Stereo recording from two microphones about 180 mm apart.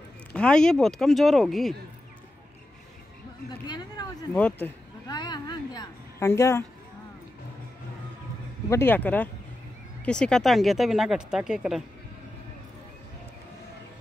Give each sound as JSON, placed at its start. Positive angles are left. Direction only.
{"t": 0.3, "sound": "speech", "side_deg": 5}
{"t": 3.6, "sound": "a sound", "side_deg": 25}
{"t": 4.3, "sound": "speech", "side_deg": 10}
{"t": 5.0, "sound": "a woman's voice", "side_deg": 25}
{"t": 8.6, "sound": "speech", "side_deg": 15}